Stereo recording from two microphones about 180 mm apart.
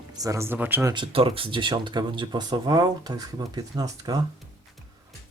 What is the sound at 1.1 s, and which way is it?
Speech, 30° right (ahead or behind).